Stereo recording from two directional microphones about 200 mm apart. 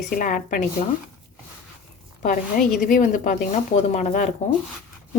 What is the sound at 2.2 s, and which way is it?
Speech, 40° left (ahead or behind).